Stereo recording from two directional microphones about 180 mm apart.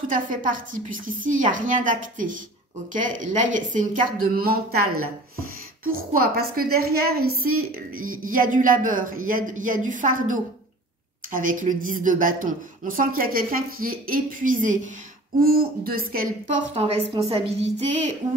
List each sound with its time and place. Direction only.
0.1 s a woman's voice: 50° right (ahead or behind)
5.9 s a woman's voice: 55° right (ahead or behind); by 18.1 s 35° right (ahead or behind)